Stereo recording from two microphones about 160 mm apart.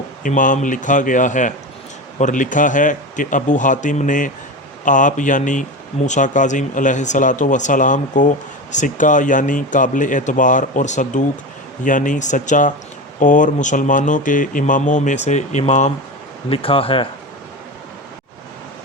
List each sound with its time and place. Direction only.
0.2 s speech: 55° left (ahead or behind)
16.5 s speech: 35° left (ahead or behind)